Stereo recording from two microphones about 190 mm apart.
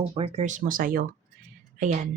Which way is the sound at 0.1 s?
30° right (ahead or behind).